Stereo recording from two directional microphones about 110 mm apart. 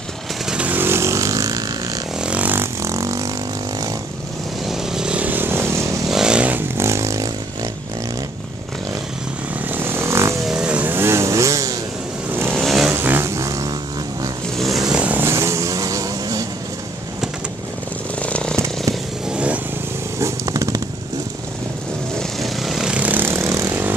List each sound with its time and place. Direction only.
0.5 s vehicle: 15° right (ahead or behind); by 2.0 s 30° right (ahead or behind)
2.2 s vehicle: 15° right (ahead or behind); by 3.3 s 30° right (ahead or behind)
4.6 s vehicle: 5° right (ahead or behind); by 5.9 s 25° right (ahead or behind)
6.0 s vehicle: 5° right (ahead or behind)
6.8 s a sound: 25° right (ahead or behind)
9.7 s vehicle: 20° right (ahead or behind)
10.4 s vehicle: 5° right (ahead or behind); by 11.7 s 30° right (ahead or behind)
12.4 s vehicle: centre (ahead or behind)
12.9 s vehicle: 20° right (ahead or behind)
14.9 s vehicle: 10° right (ahead or behind); by 16.4 s 30° right (ahead or behind)
18.2 s chainsaw: 10° left (ahead or behind)
19.2 s motorcycle: 10° right (ahead or behind)
20.2 s a sound: 30° right (ahead or behind)
22.4 s vehicle: centre (ahead or behind); by 23.8 s 25° right (ahead or behind)